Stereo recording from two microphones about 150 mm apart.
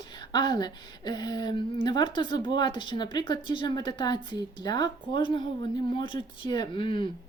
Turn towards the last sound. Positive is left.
turn(degrees=35)  # may be behind; listen again after turning